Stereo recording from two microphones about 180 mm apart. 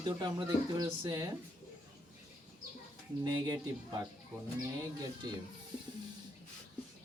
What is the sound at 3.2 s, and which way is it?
Speech, 20° right (ahead or behind).